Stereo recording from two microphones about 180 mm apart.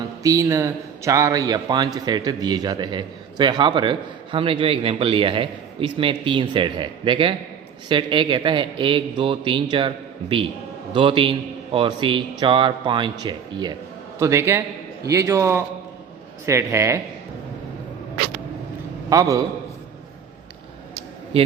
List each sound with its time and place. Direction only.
0.2 s a man's voice: 20° right (ahead or behind)
19.1 s a man's voice: 20° right (ahead or behind)